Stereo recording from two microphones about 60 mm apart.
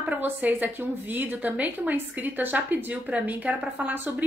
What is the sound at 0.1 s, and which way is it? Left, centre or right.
A woman's voice, right.